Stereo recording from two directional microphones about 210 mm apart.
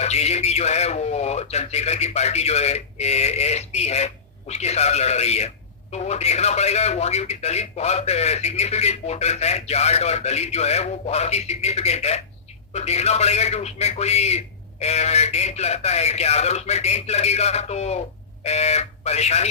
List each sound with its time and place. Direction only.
0.0 s a man's voice: 30° left (ahead or behind)